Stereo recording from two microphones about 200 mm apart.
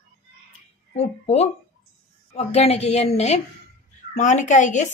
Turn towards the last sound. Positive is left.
turn(degrees=40)  # may be behind; listen again after turning